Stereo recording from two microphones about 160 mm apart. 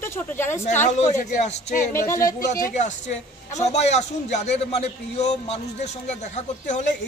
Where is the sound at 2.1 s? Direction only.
20° left (ahead or behind).